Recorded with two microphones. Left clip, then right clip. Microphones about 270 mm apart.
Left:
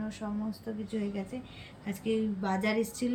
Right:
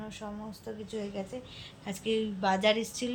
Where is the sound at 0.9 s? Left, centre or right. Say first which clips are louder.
Right 1 dB; right.